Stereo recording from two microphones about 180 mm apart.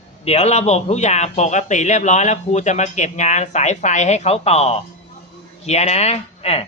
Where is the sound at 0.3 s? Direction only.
35° left (ahead or behind).